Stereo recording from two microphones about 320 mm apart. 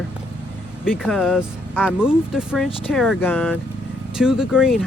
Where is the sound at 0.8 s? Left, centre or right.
Centre.